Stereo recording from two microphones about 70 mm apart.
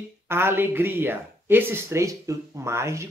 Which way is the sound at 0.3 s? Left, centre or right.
Right.